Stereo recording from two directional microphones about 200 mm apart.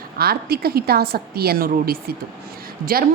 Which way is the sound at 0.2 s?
50° right (ahead or behind).